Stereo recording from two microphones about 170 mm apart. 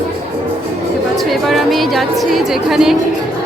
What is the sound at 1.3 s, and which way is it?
A woman's voice, centre (ahead or behind).